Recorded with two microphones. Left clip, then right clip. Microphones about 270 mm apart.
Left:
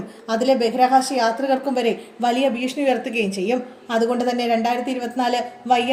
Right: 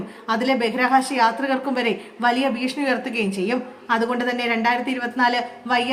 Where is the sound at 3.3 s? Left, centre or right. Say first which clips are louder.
Left 2 dB; right.